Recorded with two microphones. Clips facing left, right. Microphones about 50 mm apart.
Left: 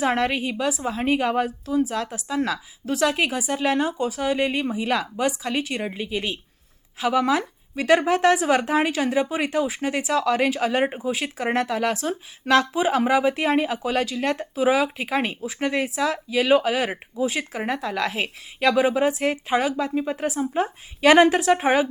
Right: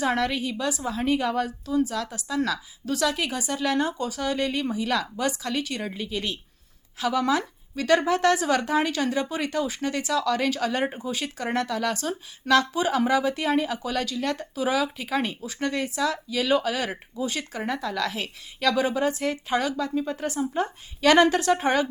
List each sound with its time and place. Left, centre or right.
0.0 s a woman's voice: left